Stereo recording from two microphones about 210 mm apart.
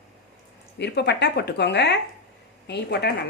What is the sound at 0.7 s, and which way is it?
A woman's voice, 55° left (ahead or behind).